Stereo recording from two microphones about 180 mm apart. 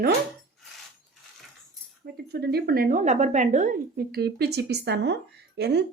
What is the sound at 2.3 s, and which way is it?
Speech, 60° right (ahead or behind).